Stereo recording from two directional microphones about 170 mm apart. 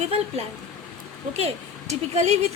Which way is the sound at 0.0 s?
40° right (ahead or behind).